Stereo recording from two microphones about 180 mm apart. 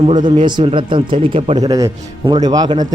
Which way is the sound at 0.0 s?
30° right (ahead or behind).